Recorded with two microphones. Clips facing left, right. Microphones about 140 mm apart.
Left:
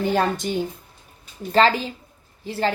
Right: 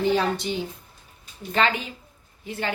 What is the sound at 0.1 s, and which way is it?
Speech, 50° left (ahead or behind).